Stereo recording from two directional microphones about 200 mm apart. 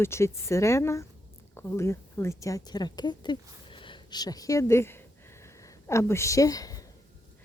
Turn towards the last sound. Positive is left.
turn(degrees=15)  # may be behind; listen again after turning